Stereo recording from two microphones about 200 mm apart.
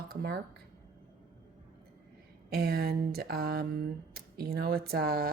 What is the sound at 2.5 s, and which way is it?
Speech, 50° right (ahead or behind).